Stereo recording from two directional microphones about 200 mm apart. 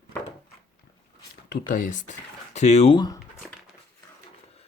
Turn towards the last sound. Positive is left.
turn(degrees=25)  # may be behind; listen again after turning